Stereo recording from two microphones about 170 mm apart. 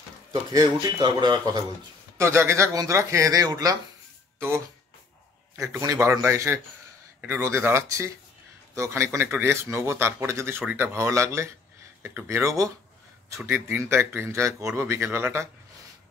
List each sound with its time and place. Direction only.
0.3 s speech: 25° right (ahead or behind)
5.6 s speech: 20° right (ahead or behind)